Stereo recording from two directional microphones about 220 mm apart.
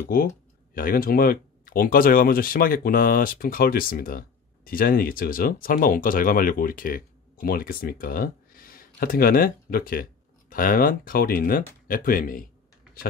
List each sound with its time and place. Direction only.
0.7 s speech: 40° left (ahead or behind)